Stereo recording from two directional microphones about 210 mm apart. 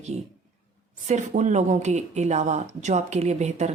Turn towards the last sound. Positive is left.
turn(degrees=-30)  # may be behind; listen again after turning